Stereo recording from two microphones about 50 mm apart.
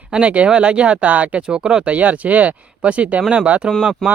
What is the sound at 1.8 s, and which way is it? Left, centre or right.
Speech, right.